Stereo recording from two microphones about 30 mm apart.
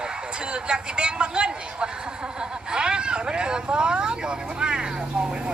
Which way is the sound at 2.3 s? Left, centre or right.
Right.